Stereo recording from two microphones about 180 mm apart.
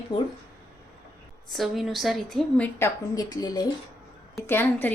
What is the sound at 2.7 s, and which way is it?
Speech, 20° left (ahead or behind).